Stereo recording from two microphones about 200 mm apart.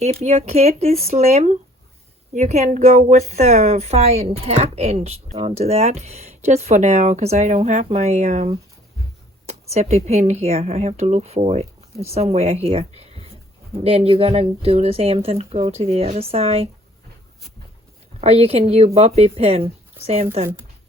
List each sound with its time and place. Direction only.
0.0 s speech: 30° right (ahead or behind)
18.2 s speech: 30° right (ahead or behind)